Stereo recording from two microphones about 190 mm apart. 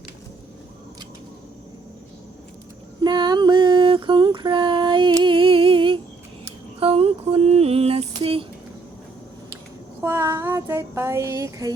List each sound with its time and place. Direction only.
3.0 s a sound: 20° right (ahead or behind)
6.7 s mantra: 30° right (ahead or behind)
10.0 s child singing: 15° right (ahead or behind)